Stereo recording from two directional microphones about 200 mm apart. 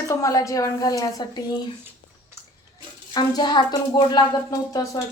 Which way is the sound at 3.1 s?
20° left (ahead or behind).